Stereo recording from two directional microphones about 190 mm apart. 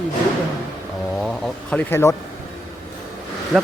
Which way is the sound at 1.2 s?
5° left (ahead or behind).